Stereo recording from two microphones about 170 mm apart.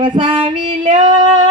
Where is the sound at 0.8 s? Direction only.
45° right (ahead or behind).